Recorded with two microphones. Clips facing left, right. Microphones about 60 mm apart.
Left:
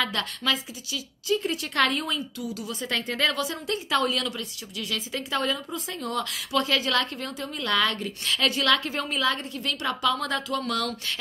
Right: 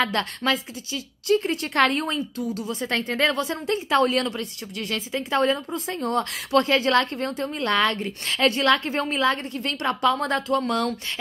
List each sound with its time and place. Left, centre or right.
0.0 s a woman's voice: right